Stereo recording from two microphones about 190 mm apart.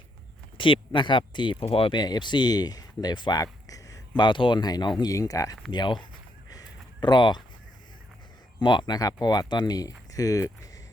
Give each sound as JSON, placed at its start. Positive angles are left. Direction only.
{"t": 0.5, "sound": "speech", "side_deg": 25}
{"t": 6.5, "sound": "a sound", "side_deg": 20}
{"t": 8.5, "sound": "speech", "side_deg": 25}